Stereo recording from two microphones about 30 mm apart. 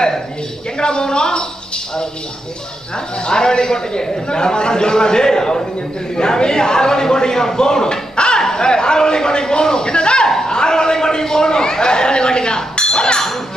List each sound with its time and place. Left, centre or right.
0.7 s a man's voice: left
3.3 s a man's voice: left
10.2 s a sound: centre